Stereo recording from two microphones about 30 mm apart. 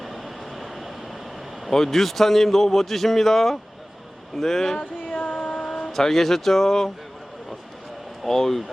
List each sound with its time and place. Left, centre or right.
0.0 s vehicle: centre
1.7 s speech: centre
2.0 s speech: centre
5.0 s a sound: left
5.4 s a sound: left
5.9 s speech: centre
8.2 s speech: centre